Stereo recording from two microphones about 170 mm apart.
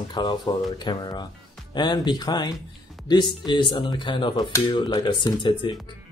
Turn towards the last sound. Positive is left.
turn(degrees=30)  # may be behind; listen again after turning